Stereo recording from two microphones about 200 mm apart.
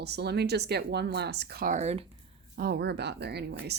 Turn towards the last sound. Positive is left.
turn(degrees=-55)  # may be behind; listen again after turning